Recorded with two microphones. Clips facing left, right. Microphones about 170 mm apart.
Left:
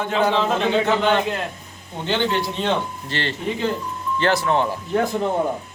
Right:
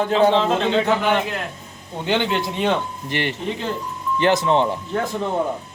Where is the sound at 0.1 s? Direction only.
30° right (ahead or behind).